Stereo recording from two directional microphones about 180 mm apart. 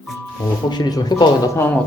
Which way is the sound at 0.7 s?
20° left (ahead or behind).